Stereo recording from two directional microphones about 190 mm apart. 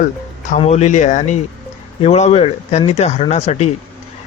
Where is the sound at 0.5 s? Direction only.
35° left (ahead or behind).